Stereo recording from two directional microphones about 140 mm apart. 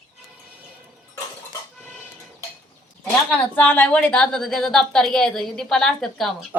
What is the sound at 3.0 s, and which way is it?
A woman's voice, 5° left (ahead or behind).